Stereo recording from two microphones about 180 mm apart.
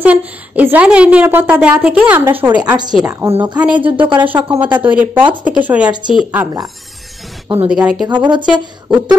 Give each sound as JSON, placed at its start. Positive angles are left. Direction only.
{"t": 0.0, "sound": "a woman's voice", "side_deg": -10}
{"t": 3.2, "sound": "a woman's voice", "side_deg": -15}
{"t": 3.9, "sound": "speech", "side_deg": -30}
{"t": 4.2, "sound": "a woman's voice", "side_deg": -10}
{"t": 4.6, "sound": "speech", "side_deg": -25}
{"t": 4.8, "sound": "a woman's voice", "side_deg": -10}